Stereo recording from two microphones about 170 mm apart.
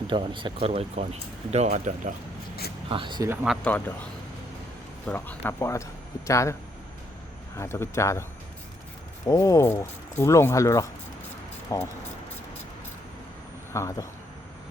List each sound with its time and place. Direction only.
0.1 s speech: 30° right (ahead or behind)
1.0 s speech: 40° right (ahead or behind)
2.9 s speech: 30° right (ahead or behind)
3.4 s speech: centre (ahead or behind)
5.0 s speech: 10° left (ahead or behind)
9.2 s speech: 20° left (ahead or behind)
13.7 s speech: 20° left (ahead or behind)